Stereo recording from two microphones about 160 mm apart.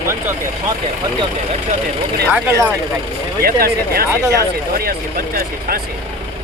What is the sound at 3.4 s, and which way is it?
Speech, 70° right (ahead or behind).